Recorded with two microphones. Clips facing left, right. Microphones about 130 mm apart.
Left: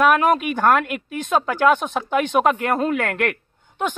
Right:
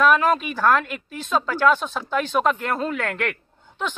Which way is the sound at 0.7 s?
55° left (ahead or behind).